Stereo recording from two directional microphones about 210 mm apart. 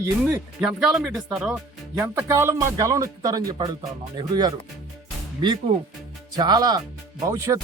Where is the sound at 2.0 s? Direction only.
10° right (ahead or behind).